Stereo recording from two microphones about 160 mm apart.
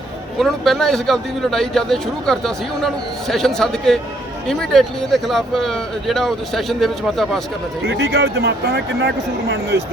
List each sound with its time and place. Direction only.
0.3 s a man's voice: centre (ahead or behind)
7.9 s speech: 90° right